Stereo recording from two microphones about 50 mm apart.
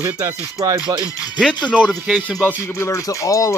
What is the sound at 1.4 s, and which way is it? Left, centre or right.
Speech, centre.